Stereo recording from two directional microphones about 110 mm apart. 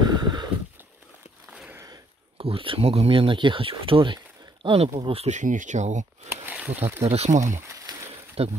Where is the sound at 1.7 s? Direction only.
35° right (ahead or behind).